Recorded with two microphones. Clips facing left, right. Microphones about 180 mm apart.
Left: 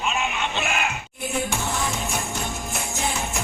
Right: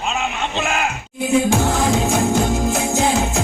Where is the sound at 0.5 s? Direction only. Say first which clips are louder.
Right 5 dB; 90° right.